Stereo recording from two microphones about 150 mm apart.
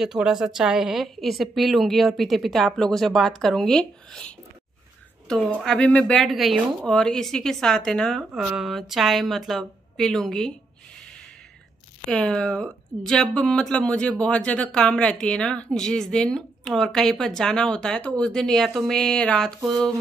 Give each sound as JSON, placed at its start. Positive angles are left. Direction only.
{"t": 0.0, "sound": "speech", "side_deg": -5}
{"t": 5.5, "sound": "speech", "side_deg": 0}
{"t": 12.1, "sound": "speech", "side_deg": 5}